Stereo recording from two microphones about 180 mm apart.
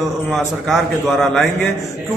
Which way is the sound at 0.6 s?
Centre (ahead or behind).